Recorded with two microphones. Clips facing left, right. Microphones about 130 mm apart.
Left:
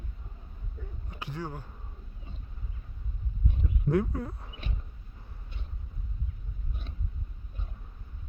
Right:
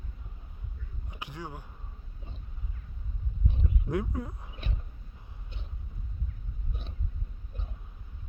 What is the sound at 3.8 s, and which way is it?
Speech, 15° right (ahead or behind).